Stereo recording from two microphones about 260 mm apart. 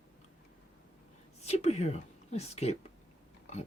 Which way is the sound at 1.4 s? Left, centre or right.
Left.